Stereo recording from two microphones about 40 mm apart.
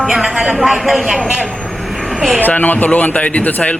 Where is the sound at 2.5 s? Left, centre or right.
Left.